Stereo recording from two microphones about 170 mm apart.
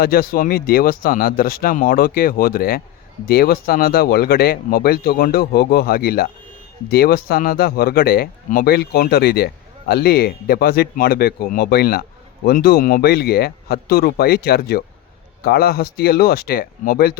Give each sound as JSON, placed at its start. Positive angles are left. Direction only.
{"t": 0.0, "sound": "speech", "side_deg": 65}